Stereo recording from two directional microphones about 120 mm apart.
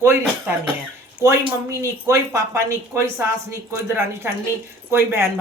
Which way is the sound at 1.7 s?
25° right (ahead or behind).